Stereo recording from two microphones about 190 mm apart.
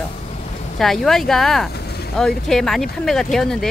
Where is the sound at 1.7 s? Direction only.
55° left (ahead or behind).